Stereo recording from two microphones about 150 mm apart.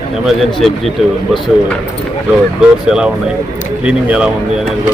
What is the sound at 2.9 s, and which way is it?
A man's voice, 5° right (ahead or behind).